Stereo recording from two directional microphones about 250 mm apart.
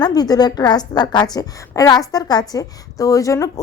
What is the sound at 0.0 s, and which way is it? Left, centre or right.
A woman's voice, centre.